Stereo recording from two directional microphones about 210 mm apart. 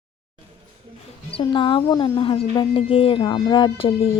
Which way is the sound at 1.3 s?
25° left (ahead or behind).